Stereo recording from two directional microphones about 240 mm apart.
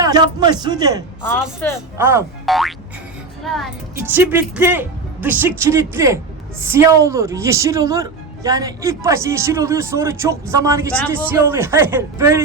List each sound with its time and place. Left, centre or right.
0.0 s speech: centre
1.6 s speech: centre
2.0 s speech: centre